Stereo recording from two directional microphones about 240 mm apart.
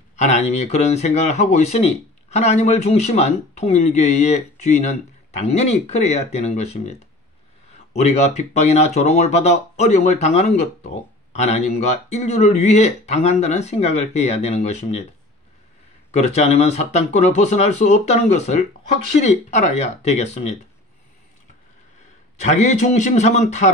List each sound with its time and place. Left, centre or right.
0.1 s speech: left
16.1 s speech: left
22.4 s speech: left